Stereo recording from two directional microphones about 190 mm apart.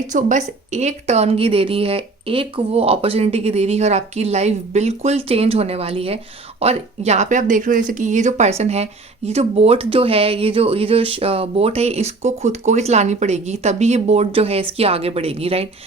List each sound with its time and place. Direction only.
0.1 s speech: 40° right (ahead or behind)